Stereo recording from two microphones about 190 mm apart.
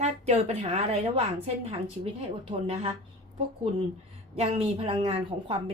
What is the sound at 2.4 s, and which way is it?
Speech, 30° right (ahead or behind).